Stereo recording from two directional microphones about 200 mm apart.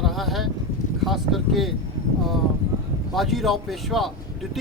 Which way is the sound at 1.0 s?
Centre (ahead or behind).